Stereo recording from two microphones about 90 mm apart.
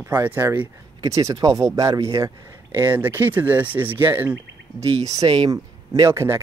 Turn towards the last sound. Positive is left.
turn(degrees=-30)  # may be behind; listen again after turning